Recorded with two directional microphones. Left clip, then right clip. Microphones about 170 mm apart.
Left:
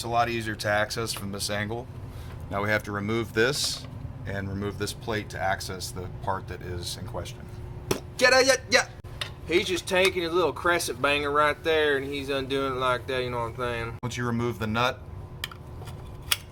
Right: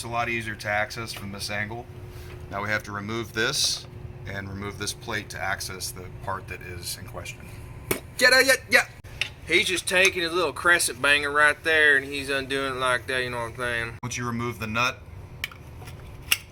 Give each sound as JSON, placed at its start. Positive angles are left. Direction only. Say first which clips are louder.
{"t": 0.0, "sound": "speech", "louder": "left 2 dB", "side_deg": 65}
{"t": 2.5, "sound": "speech", "louder": "left 1 dB", "side_deg": 50}
{"t": 6.2, "sound": "speech", "louder": "left 1 dB", "side_deg": 60}
{"t": 7.9, "sound": "speech", "louder": "right 2 dB", "side_deg": -10}
{"t": 9.5, "sound": "speech", "louder": "right 3 dB", "side_deg": 5}
{"t": 14.0, "sound": "speech", "louder": "even", "side_deg": 55}